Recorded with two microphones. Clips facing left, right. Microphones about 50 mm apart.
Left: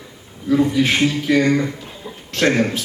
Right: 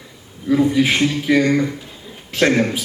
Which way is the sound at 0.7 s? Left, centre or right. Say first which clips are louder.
Even; centre.